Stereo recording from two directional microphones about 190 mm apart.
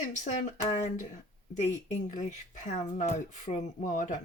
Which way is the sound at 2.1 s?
40° left (ahead or behind).